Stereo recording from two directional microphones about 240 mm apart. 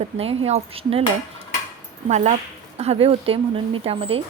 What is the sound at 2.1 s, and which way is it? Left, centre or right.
A woman's voice, right.